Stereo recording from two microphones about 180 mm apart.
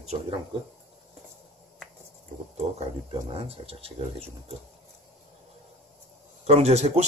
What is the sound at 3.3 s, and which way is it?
Speech, 30° right (ahead or behind).